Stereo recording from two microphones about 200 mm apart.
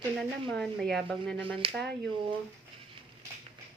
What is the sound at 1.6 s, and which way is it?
Speech, 25° right (ahead or behind).